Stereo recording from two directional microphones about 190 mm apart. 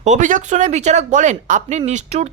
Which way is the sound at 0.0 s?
40° right (ahead or behind).